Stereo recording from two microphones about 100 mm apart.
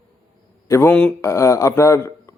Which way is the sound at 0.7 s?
25° left (ahead or behind).